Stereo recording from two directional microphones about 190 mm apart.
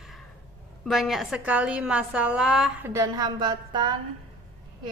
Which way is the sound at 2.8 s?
15° right (ahead or behind).